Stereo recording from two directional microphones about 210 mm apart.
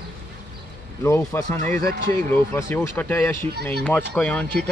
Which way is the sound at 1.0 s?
15° left (ahead or behind).